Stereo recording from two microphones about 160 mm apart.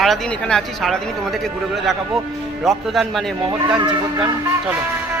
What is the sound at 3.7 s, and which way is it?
Music, 30° right (ahead or behind).